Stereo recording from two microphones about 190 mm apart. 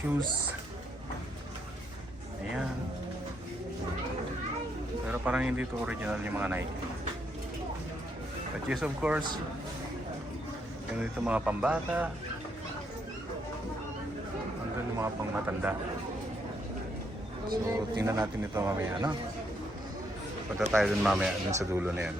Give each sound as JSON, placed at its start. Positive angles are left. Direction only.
{"t": 5.0, "sound": "speech", "side_deg": -10}
{"t": 8.7, "sound": "speech", "side_deg": -5}
{"t": 11.0, "sound": "speech", "side_deg": -5}
{"t": 14.9, "sound": "speech", "side_deg": -15}
{"t": 17.7, "sound": "speech", "side_deg": -15}
{"t": 20.7, "sound": "speech", "side_deg": -5}
{"t": 21.5, "sound": "speech", "side_deg": -15}